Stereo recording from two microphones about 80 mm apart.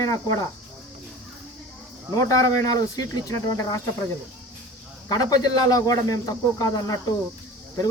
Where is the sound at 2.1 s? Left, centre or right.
Left.